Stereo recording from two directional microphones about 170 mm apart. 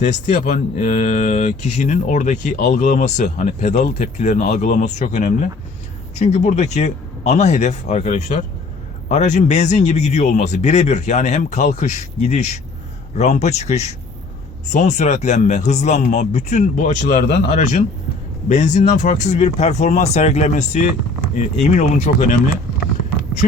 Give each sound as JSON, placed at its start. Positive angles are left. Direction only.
{"t": 0.0, "sound": "speech", "side_deg": 45}